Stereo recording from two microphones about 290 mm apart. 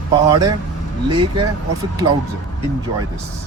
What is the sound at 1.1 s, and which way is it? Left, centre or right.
Speech, centre.